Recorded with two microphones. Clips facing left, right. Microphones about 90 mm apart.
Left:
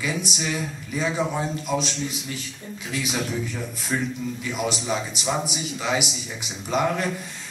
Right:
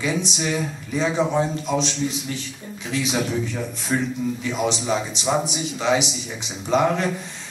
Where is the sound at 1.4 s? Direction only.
Centre (ahead or behind).